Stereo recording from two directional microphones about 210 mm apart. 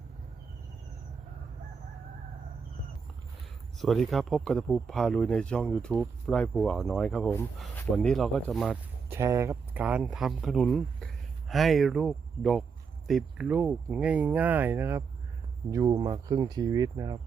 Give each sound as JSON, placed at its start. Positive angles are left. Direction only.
{"t": 3.8, "sound": "speech", "side_deg": 0}